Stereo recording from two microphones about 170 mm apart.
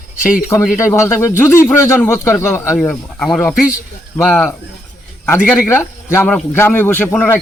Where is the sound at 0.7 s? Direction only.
15° left (ahead or behind).